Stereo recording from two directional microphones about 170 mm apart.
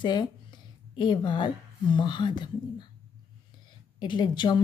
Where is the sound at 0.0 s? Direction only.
25° left (ahead or behind).